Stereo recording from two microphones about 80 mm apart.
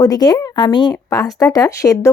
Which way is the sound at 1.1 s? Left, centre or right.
Left.